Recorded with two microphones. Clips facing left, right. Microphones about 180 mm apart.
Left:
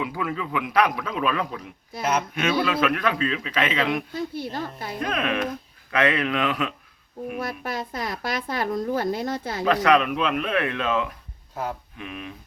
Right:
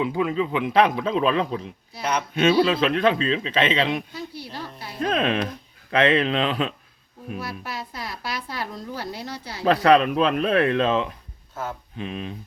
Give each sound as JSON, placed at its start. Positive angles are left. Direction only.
{"t": 0.0, "sound": "speech", "side_deg": -20}
{"t": 1.9, "sound": "speech", "side_deg": 50}
{"t": 2.3, "sound": "speech", "side_deg": -30}
{"t": 4.1, "sound": "speech", "side_deg": 50}
{"t": 4.9, "sound": "speech", "side_deg": -30}
{"t": 7.3, "sound": "speech", "side_deg": 50}
{"t": 9.6, "sound": "speech", "side_deg": -35}